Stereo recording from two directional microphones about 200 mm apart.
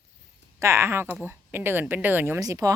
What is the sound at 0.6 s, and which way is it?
A woman's voice, 15° right (ahead or behind).